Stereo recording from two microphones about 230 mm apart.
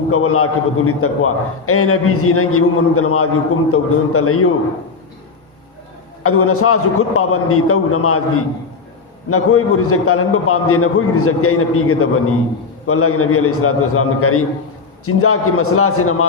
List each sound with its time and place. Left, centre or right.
0.1 s a man's voice: left
6.2 s a man's voice: left
9.3 s a man's voice: left